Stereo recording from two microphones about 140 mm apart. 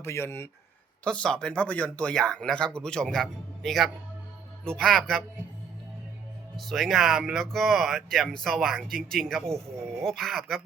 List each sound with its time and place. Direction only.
0.0 s speech: 20° left (ahead or behind)
1.0 s speech: 5° left (ahead or behind)
6.6 s speech: centre (ahead or behind)